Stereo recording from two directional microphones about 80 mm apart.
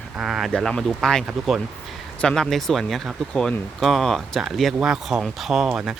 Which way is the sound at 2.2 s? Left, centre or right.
Centre.